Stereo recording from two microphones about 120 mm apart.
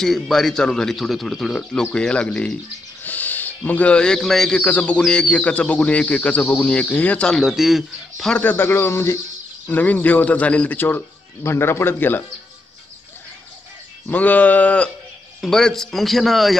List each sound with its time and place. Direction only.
0.0 s a man's voice: centre (ahead or behind)
8.4 s a man's voice: 15° left (ahead or behind)
14.0 s a man's voice: 15° left (ahead or behind)